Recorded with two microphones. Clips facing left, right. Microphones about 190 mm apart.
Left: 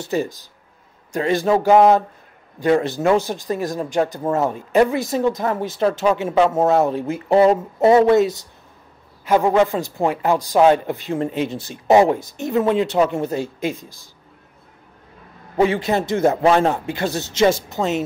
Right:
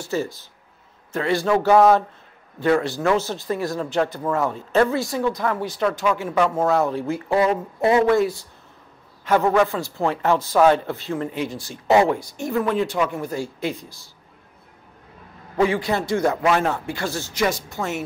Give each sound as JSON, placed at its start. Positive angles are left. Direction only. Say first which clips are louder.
{"t": 0.0, "sound": "a man's voice", "louder": "left 3 dB", "side_deg": 15}
{"t": 15.6, "sound": "speech", "louder": "left 2 dB", "side_deg": 20}